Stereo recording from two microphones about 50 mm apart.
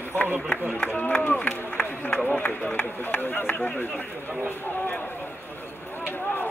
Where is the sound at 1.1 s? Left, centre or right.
Left.